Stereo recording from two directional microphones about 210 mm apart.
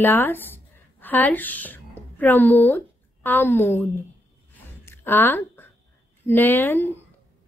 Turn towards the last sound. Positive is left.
turn(degrees=10)  # may be behind; listen again after turning